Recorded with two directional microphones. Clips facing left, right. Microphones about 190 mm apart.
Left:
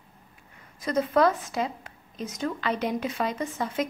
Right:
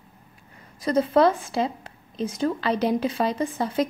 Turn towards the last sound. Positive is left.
turn(degrees=-35)  # may be behind; listen again after turning